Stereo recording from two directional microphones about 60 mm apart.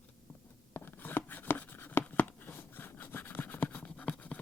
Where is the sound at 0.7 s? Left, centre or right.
Left.